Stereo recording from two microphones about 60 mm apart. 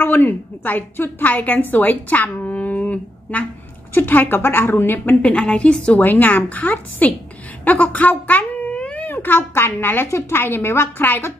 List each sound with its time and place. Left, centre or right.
0.0 s a woman's voice: left
5.2 s a woman's voice: centre
6.0 s a woman's voice: left